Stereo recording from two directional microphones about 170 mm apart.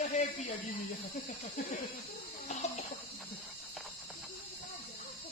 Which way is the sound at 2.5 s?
40° left (ahead or behind).